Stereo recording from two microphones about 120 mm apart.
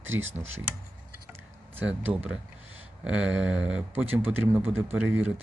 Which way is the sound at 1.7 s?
15° right (ahead or behind).